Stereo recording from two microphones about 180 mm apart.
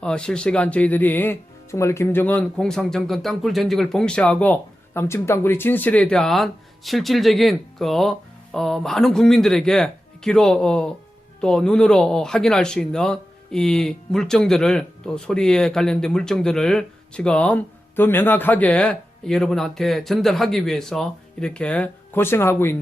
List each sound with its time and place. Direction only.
0.0 s speech: 5° left (ahead or behind)